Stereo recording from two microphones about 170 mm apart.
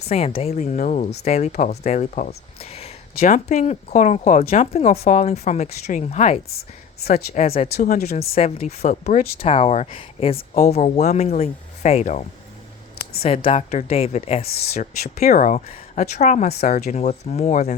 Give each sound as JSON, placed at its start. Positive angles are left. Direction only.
{"t": 0.0, "sound": "speech", "side_deg": 40}
{"t": 3.2, "sound": "speech", "side_deg": 45}
{"t": 6.5, "sound": "a woman's voice", "side_deg": 65}
{"t": 7.1, "sound": "speech", "side_deg": 40}
{"t": 7.9, "sound": "speech", "side_deg": 65}
{"t": 8.4, "sound": "speech", "side_deg": 40}
{"t": 13.2, "sound": "speech", "side_deg": 35}